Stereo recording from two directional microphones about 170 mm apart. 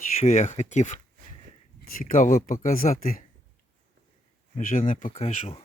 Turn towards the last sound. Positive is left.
turn(degrees=35)  # may be behind; listen again after turning